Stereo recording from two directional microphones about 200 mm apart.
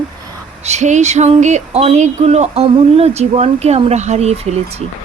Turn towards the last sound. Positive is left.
turn(degrees=-30)  # may be behind; listen again after turning